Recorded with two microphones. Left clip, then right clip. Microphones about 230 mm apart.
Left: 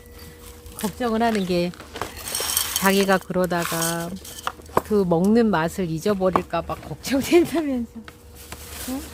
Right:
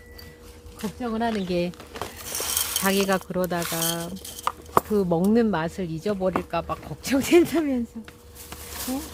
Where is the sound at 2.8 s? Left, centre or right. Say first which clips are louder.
Left 5 dB; centre.